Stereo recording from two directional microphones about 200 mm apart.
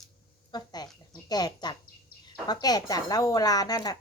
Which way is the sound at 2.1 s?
50° left (ahead or behind).